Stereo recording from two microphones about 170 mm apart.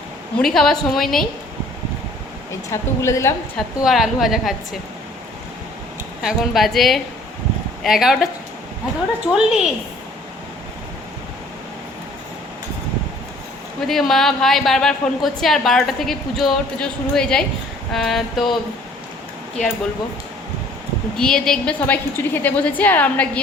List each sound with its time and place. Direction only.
0.3 s a woman's voice: centre (ahead or behind)
2.7 s a woman's voice: 15° left (ahead or behind)
3.8 s a woman's voice: centre (ahead or behind)
6.2 s a woman's voice: centre (ahead or behind)
13.8 s a woman's voice: centre (ahead or behind)
21.2 s a woman's voice: 5° left (ahead or behind)